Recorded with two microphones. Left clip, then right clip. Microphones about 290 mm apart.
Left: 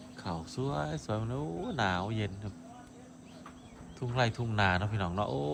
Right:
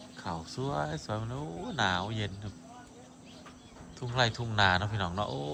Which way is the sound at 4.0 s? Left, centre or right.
Centre.